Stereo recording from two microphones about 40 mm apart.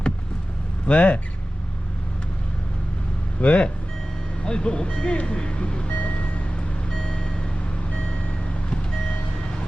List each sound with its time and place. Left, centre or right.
0.9 s speech: left
3.4 s speech: left
5.9 s vehicle: left
6.9 s vehicle: centre